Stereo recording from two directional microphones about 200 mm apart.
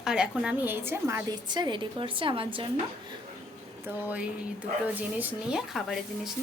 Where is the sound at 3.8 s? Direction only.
10° right (ahead or behind).